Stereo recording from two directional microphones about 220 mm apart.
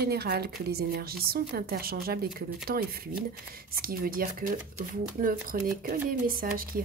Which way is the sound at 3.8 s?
40° right (ahead or behind).